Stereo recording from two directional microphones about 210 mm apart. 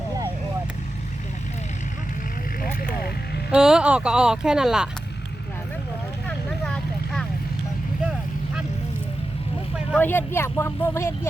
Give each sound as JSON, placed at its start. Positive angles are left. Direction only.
{"t": 2.8, "sound": "vehicle", "side_deg": 45}
{"t": 3.5, "sound": "speech", "side_deg": -5}
{"t": 6.2, "sound": "vehicle", "side_deg": 5}
{"t": 10.0, "sound": "speech", "side_deg": 10}